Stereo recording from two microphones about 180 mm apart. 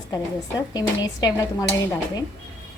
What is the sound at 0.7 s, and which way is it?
Speech, 20° left (ahead or behind).